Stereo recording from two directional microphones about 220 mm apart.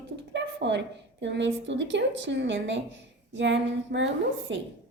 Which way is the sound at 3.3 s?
55° right (ahead or behind).